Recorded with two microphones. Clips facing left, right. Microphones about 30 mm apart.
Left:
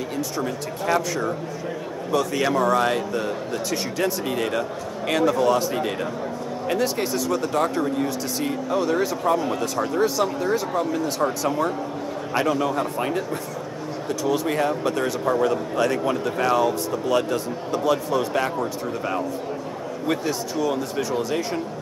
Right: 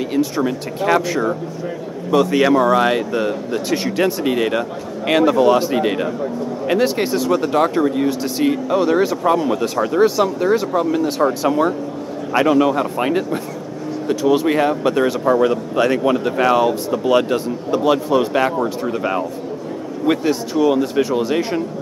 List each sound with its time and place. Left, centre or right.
0.1 s speech: right
2.1 s speech: right
20.1 s speech: right